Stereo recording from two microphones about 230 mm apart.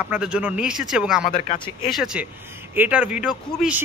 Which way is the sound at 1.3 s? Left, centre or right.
Left.